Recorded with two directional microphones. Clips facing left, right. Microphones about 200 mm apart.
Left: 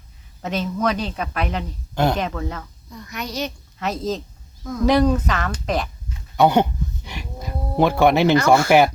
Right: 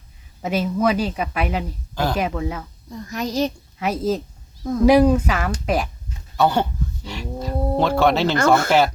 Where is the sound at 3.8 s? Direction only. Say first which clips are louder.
Right 3 dB; 10° right (ahead or behind).